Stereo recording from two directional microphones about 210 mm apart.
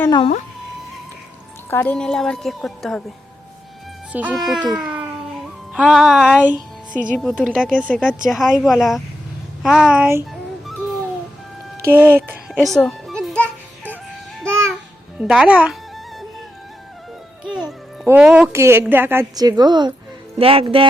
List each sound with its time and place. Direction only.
0.0 s speech: 20° left (ahead or behind)
1.7 s a woman's voice: 10° left (ahead or behind)
4.1 s a woman's voice: 5° right (ahead or behind)
4.7 s music: 5° right (ahead or behind)
7.1 s a woman's voice: centre (ahead or behind)
11.9 s music: 10° right (ahead or behind)
15.2 s a woman's voice: 5° right (ahead or behind)
17.4 s speech: 5° right (ahead or behind); by 20.8 s 25° right (ahead or behind)